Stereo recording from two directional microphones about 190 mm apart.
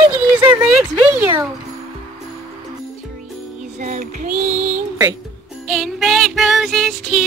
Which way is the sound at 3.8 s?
45° right (ahead or behind).